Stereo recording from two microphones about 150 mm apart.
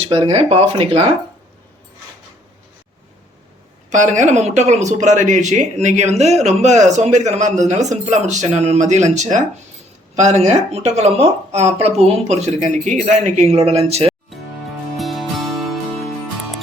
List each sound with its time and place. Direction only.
0.3 s speech: 45° right (ahead or behind)
3.8 s speech: 55° right (ahead or behind)
14.9 s music: centre (ahead or behind)